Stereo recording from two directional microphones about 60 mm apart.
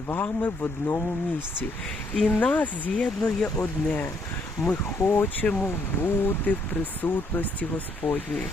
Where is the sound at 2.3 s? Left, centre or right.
Left.